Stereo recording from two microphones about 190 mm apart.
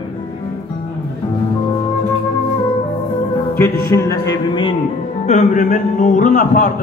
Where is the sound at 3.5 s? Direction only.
15° left (ahead or behind).